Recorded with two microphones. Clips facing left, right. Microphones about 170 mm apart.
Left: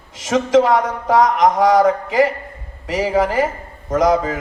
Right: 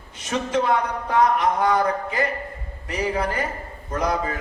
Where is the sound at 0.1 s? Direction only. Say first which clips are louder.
Left 10 dB; 90° left.